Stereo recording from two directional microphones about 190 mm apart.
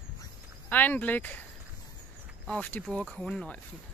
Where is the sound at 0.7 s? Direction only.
10° left (ahead or behind).